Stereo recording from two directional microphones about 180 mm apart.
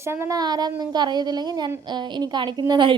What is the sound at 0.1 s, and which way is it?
A woman's voice, 15° right (ahead or behind).